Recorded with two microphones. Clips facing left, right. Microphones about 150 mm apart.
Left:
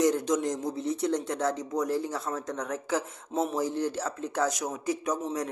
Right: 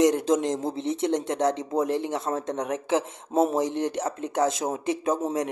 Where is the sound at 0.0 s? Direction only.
20° right (ahead or behind).